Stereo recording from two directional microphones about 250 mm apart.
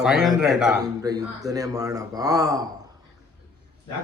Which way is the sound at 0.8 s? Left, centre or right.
Centre.